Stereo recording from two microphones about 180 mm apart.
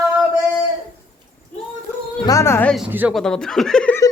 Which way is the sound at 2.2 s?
15° left (ahead or behind).